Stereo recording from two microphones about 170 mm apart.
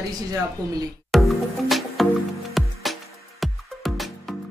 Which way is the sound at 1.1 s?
Centre (ahead or behind).